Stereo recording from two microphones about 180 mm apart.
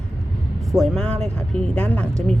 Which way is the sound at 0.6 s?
Centre (ahead or behind).